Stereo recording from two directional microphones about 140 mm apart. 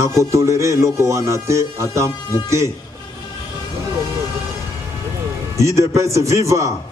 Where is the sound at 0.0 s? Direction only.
20° right (ahead or behind).